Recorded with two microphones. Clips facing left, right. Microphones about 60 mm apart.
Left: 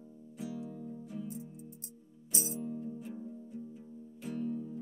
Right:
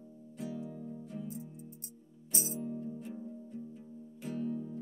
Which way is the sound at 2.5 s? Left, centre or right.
Centre.